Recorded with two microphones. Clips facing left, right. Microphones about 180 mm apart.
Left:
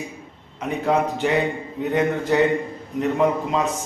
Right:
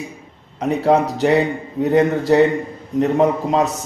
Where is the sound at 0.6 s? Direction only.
35° right (ahead or behind).